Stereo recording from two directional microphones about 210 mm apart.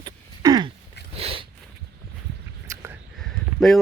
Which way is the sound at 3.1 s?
Centre (ahead or behind).